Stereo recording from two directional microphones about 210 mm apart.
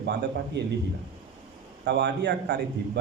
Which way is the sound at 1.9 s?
55° right (ahead or behind).